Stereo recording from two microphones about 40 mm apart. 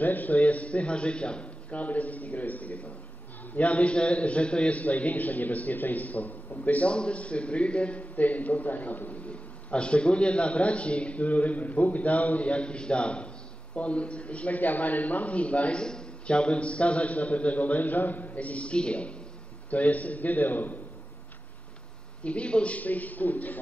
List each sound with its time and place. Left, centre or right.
0.0 s a man's voice: left
6.9 s a man's voice: left
8.2 s a man's voice: left
9.3 s a man's voice: left
15.8 s a man's voice: left
19.7 s a man's voice: left
22.2 s a man's voice: left
22.8 s a man's voice: left